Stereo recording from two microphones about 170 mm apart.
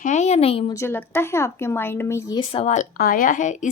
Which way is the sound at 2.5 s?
40° left (ahead or behind).